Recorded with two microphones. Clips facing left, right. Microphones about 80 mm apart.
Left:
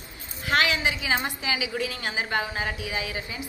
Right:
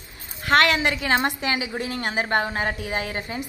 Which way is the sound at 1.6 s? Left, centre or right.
Right.